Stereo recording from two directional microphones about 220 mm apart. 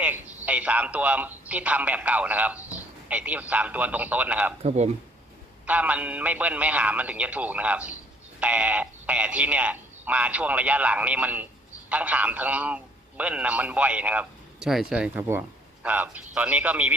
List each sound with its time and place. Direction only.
0.0 s a man's voice: 5° right (ahead or behind)
4.6 s speech: 30° right (ahead or behind)
5.6 s a man's voice: 5° right (ahead or behind)